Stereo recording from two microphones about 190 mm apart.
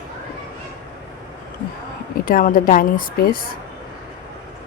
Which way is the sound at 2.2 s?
45° left (ahead or behind).